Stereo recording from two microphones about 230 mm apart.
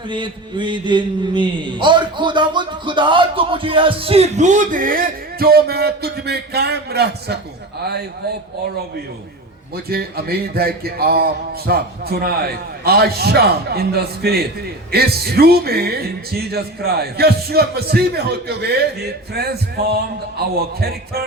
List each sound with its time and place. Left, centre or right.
0.1 s a man's voice: right
9.7 s speech: right